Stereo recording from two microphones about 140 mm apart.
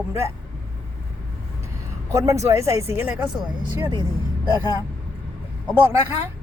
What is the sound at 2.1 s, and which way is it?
Speech, 20° right (ahead or behind).